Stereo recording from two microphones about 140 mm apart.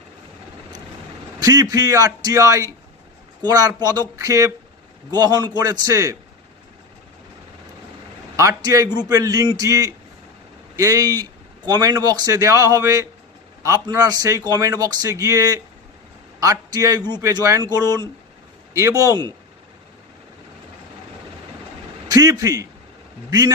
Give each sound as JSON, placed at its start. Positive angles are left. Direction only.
{"t": 1.4, "sound": "speech", "side_deg": -25}
{"t": 8.4, "sound": "speech", "side_deg": -25}
{"t": 22.1, "sound": "speech", "side_deg": -25}